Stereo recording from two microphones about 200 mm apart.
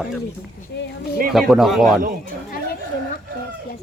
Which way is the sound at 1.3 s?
Centre (ahead or behind).